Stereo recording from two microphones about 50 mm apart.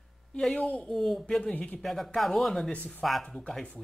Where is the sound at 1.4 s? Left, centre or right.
Left.